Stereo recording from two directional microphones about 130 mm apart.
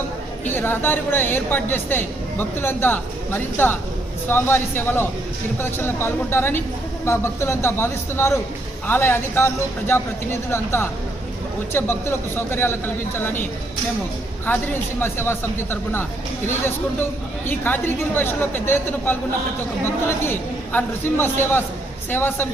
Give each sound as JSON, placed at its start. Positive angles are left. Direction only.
{"t": 0.4, "sound": "a woman's voice", "side_deg": 15}
{"t": 17.5, "sound": "a woman's voice", "side_deg": 15}